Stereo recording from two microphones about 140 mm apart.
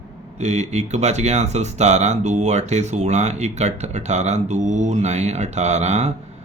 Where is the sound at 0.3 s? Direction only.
55° right (ahead or behind).